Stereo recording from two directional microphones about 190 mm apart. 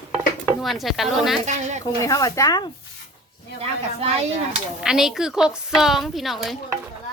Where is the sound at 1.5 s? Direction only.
40° right (ahead or behind).